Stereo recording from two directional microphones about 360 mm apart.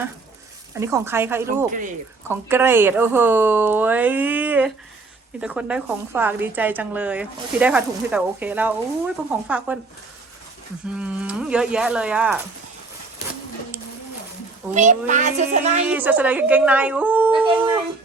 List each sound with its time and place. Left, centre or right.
0.7 s a woman's voice: centre
10.9 s a woman's voice: centre
14.7 s speech: centre
15.9 s a woman's voice: centre